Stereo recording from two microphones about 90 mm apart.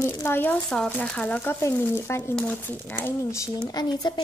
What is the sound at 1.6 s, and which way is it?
Speech, 30° left (ahead or behind).